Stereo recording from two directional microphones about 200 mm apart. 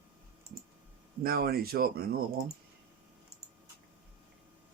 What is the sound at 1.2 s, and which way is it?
Speech, 50° right (ahead or behind).